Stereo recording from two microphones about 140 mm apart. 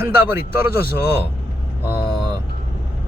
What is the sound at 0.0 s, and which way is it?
Speech, 15° right (ahead or behind).